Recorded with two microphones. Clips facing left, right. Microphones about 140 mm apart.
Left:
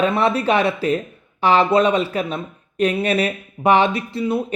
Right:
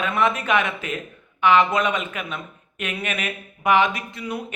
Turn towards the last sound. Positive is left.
turn(degrees=30)  # may be behind; listen again after turning